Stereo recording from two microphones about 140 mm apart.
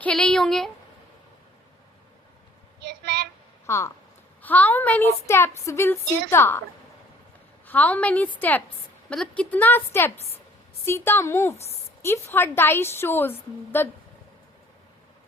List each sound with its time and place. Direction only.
0.0 s speech: 5° left (ahead or behind)
3.7 s a woman's voice: 20° left (ahead or behind)
7.7 s a woman's voice: 10° left (ahead or behind)